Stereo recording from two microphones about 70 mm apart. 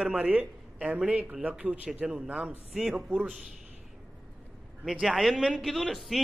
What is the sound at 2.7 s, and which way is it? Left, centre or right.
Speech, centre.